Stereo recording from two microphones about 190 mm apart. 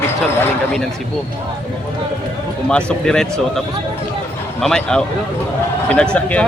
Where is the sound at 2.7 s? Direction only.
5° left (ahead or behind).